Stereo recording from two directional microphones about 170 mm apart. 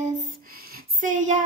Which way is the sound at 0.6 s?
55° right (ahead or behind).